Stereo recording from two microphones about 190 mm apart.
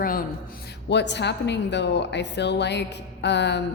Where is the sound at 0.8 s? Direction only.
65° left (ahead or behind).